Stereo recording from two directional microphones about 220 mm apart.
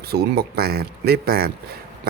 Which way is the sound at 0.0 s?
45° right (ahead or behind).